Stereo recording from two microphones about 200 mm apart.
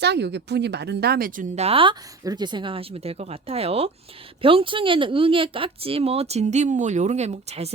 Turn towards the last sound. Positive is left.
turn(degrees=-30)  # may be behind; listen again after turning